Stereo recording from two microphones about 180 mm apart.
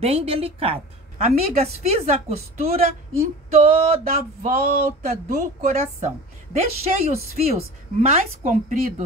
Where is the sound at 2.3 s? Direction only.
35° right (ahead or behind).